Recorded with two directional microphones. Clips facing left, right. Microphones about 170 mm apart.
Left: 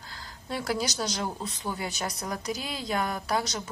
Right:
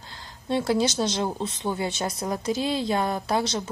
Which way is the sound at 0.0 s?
25° right (ahead or behind).